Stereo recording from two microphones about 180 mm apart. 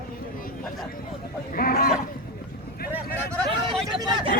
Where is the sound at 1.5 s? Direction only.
55° left (ahead or behind).